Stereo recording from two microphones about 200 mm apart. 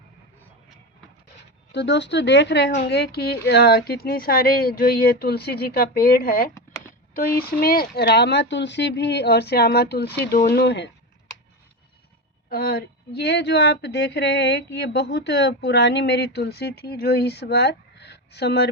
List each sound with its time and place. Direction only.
1.7 s a woman's voice: 60° left (ahead or behind)
12.5 s speech: 50° left (ahead or behind)